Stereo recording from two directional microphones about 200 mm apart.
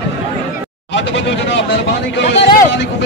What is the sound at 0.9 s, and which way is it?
Vehicle, 65° left (ahead or behind).